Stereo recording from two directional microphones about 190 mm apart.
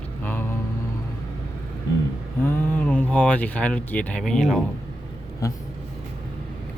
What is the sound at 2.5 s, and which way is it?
Speech, 10° left (ahead or behind).